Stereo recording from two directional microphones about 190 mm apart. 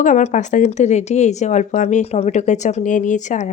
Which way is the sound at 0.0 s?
40° left (ahead or behind).